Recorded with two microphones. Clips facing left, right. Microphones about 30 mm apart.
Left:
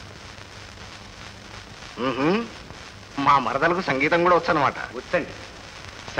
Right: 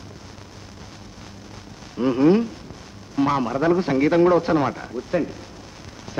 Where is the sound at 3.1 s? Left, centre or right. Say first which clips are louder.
Left 2 dB; left.